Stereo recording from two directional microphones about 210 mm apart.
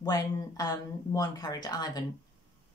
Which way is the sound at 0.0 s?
15° left (ahead or behind).